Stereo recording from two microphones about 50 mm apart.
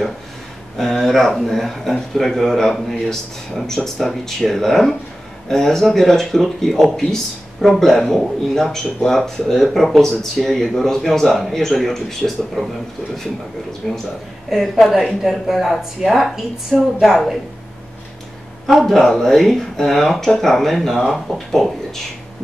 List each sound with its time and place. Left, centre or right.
0.7 s speech: centre
13.8 s speech: centre
18.7 s speech: centre